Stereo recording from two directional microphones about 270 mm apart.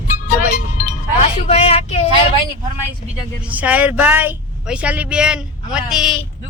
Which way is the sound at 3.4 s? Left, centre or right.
Centre.